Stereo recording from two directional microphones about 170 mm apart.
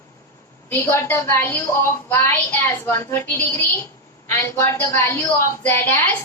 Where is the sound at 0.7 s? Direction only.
15° left (ahead or behind).